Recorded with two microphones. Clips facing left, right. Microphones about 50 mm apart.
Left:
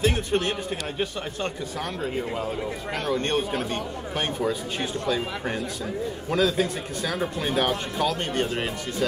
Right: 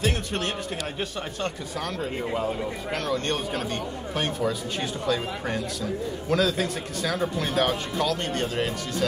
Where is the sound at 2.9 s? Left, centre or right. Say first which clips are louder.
Left 2 dB; centre.